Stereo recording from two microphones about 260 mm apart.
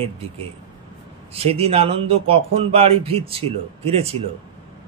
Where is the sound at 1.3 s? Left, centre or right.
Right.